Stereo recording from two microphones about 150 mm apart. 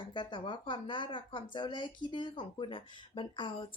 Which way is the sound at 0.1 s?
35° left (ahead or behind).